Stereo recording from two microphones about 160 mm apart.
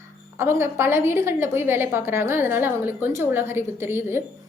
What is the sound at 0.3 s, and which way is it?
A woman's voice, 15° right (ahead or behind).